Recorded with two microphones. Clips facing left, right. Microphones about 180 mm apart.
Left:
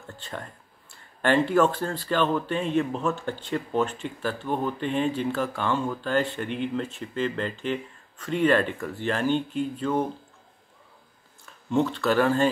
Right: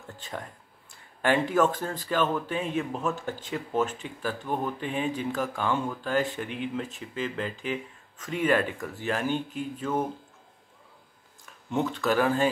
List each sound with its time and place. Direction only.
1.2 s speech: 5° right (ahead or behind)
11.7 s speech: centre (ahead or behind)